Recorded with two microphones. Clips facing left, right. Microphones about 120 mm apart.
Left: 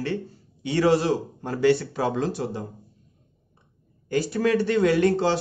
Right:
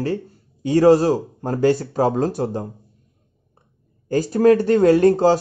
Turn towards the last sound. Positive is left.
turn(degrees=-40)  # may be behind; listen again after turning